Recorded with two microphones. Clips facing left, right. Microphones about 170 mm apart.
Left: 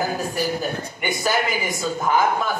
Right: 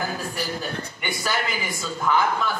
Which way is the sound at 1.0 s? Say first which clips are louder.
Left 5 dB; 45° left (ahead or behind).